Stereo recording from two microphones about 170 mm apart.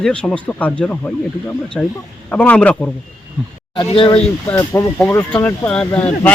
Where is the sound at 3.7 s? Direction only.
30° left (ahead or behind).